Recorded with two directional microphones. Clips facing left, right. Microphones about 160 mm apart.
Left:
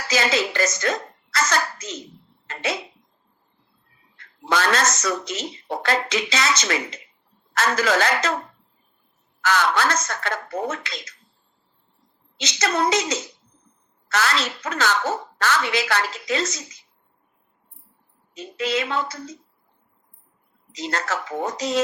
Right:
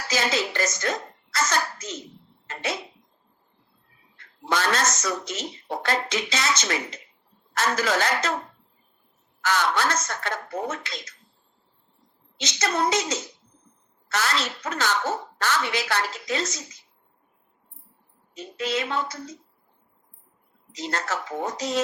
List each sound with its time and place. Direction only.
0.1 s a child's voice: 90° left
4.4 s a woman's voice: 90° left
9.4 s a child's voice: 85° left
12.4 s a child's voice: 85° left
18.3 s a woman's voice: 90° left
20.7 s a child's voice: 85° left